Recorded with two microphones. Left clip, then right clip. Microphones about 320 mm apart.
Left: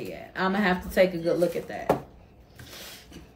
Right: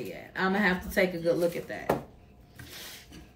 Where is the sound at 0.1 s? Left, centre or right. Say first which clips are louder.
Left 2 dB; centre.